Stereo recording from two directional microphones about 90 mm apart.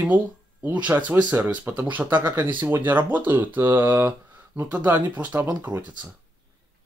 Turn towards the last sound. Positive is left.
turn(degrees=-20)  # may be behind; listen again after turning